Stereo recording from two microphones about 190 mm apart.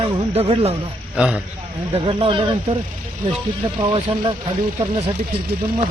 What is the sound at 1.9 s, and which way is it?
Speech, 30° right (ahead or behind).